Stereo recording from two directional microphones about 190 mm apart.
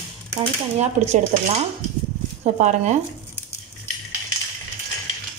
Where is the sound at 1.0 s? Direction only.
30° right (ahead or behind).